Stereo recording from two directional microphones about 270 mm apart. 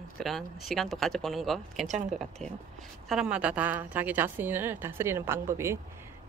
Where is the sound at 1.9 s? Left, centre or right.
Right.